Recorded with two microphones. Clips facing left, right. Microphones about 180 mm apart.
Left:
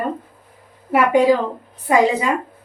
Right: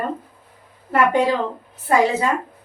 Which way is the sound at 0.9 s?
10° left (ahead or behind).